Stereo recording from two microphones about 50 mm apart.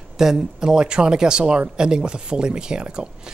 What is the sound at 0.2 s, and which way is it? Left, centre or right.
Speech, centre.